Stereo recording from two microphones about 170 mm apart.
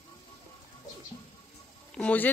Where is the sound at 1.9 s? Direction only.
10° left (ahead or behind).